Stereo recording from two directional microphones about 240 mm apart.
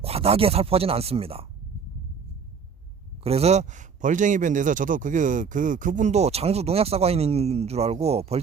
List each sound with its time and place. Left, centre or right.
0.0 s speech: right
3.2 s speech: right